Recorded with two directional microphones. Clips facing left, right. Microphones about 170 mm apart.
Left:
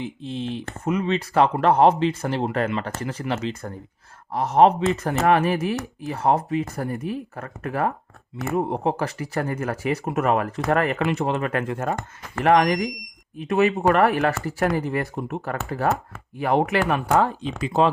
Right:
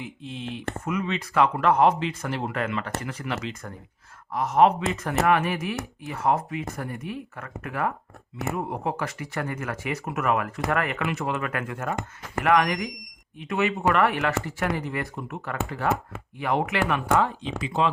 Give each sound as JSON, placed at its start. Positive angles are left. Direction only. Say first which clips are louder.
{"t": 0.0, "sound": "speech", "louder": "left 6 dB", "side_deg": 30}